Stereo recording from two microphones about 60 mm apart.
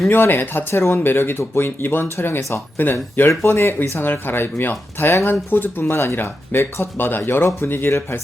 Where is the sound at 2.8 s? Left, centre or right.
Left.